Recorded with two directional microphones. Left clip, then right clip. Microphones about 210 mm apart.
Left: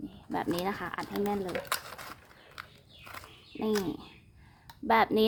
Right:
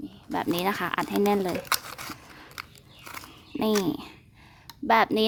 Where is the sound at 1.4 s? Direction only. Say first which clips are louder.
Right 6 dB; 25° right (ahead or behind).